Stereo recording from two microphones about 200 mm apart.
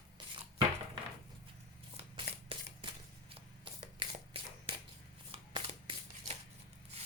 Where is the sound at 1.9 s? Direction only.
30° right (ahead or behind).